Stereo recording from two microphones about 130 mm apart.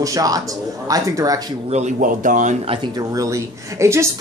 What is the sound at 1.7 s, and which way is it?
Speech, 65° right (ahead or behind).